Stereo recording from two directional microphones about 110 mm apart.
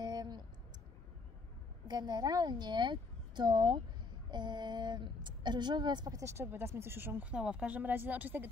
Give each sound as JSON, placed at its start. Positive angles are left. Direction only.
{"t": 0.0, "sound": "clicking", "side_deg": -40}
{"t": 1.9, "sound": "a woman's voice", "side_deg": -40}